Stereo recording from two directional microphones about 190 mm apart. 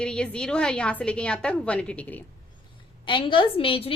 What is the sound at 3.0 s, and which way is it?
Speech, 25° left (ahead or behind).